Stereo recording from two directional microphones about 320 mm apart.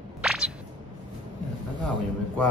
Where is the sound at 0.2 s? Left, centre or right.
Centre.